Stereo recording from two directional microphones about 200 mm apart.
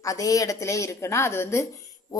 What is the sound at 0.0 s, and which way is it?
Speech, 15° left (ahead or behind).